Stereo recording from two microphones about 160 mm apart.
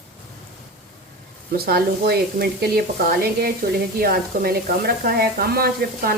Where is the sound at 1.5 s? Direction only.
75° right (ahead or behind).